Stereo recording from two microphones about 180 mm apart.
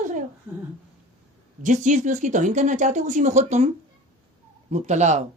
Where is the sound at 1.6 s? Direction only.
45° right (ahead or behind).